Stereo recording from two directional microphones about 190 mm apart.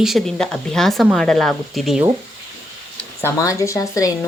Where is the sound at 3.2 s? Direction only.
15° left (ahead or behind).